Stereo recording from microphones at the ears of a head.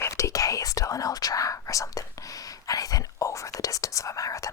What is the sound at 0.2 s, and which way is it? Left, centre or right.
Whispering, left.